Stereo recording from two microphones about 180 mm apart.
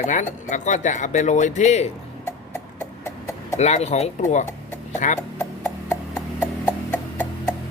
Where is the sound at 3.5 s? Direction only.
40° left (ahead or behind).